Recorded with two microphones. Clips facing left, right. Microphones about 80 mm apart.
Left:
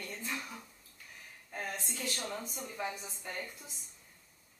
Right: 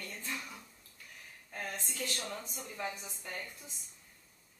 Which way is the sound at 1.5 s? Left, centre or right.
Centre.